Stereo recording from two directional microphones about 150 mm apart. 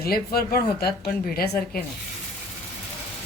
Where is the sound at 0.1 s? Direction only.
90° left.